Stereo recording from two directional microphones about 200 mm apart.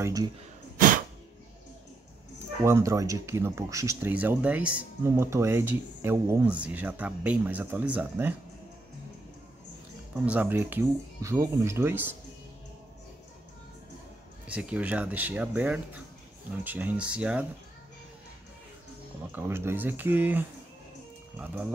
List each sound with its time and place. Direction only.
0.0 s speech: 15° right (ahead or behind)
2.3 s speech: 15° right (ahead or behind)
10.2 s speech: 10° right (ahead or behind)
14.5 s speech: 5° right (ahead or behind)
19.3 s speech: 10° right (ahead or behind)